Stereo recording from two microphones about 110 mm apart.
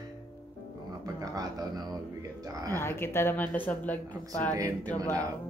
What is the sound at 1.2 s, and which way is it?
Speech, 35° right (ahead or behind).